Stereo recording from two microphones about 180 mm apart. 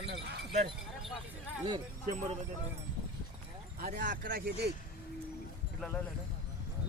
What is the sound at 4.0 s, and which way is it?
Speech, 65° right (ahead or behind).